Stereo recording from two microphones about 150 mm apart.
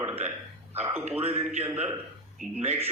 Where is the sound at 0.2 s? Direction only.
55° right (ahead or behind).